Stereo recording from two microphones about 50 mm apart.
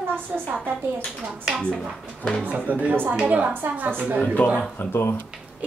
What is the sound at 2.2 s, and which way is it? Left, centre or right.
Speech, centre.